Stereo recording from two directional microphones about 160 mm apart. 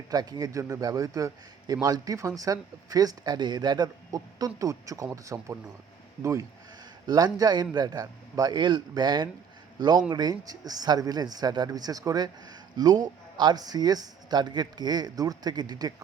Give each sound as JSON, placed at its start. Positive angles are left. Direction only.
{"t": 0.1, "sound": "a man's voice", "side_deg": -25}
{"t": 7.1, "sound": "a man's voice", "side_deg": -25}